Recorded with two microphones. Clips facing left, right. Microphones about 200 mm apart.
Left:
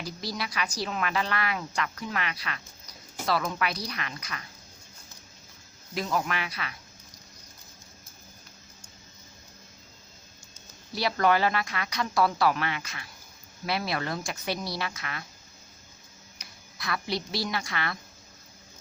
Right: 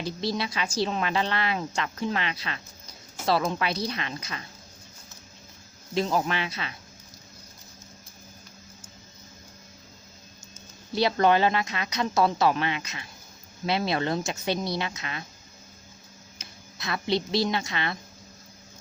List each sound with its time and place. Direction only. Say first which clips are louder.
0.0 s a woman's voice: right 6 dB; 25° right (ahead or behind)
5.9 s a woman's voice: right 4 dB; 25° right (ahead or behind)
10.9 s a woman's voice: right 3 dB; 25° right (ahead or behind)
16.4 s a woman's voice: right 2 dB; 25° right (ahead or behind)